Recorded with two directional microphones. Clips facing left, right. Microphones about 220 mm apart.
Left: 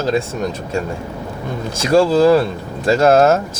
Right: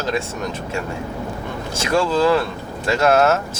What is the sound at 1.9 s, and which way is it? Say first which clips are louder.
Speech: left 6 dB; 30° left (ahead or behind).